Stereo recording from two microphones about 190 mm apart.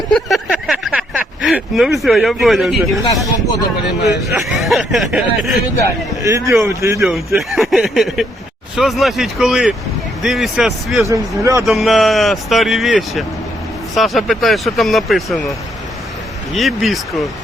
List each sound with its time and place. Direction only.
0.1 s a sound: centre (ahead or behind)
4.4 s speech: centre (ahead or behind)
6.2 s speech: 15° right (ahead or behind)
7.3 s speech: centre (ahead or behind)
11.1 s speech: 15° right (ahead or behind)
11.6 s speech: centre (ahead or behind)
16.6 s speech: centre (ahead or behind)